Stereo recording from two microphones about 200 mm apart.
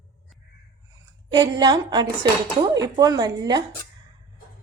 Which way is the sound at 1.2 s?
20° right (ahead or behind).